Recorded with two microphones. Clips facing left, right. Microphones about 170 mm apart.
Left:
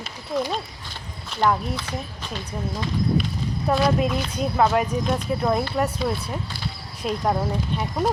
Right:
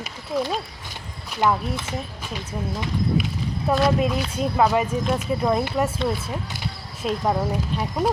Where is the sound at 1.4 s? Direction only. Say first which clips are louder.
Even; 5° right (ahead or behind).